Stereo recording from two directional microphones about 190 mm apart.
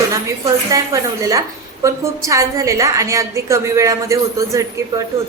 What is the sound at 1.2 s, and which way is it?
A woman's voice, 15° right (ahead or behind).